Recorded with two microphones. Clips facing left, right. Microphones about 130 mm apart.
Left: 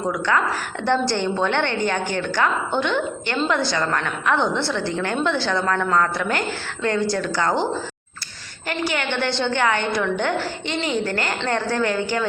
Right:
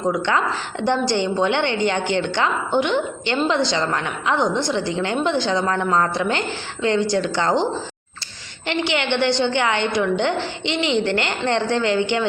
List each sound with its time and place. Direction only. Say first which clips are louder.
0.1 s a woman's voice: even; 25° right (ahead or behind)
8.9 s a woman's voice: right 5 dB; 20° right (ahead or behind)